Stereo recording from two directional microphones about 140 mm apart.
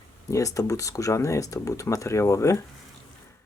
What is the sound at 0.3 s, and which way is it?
Speech, 25° left (ahead or behind).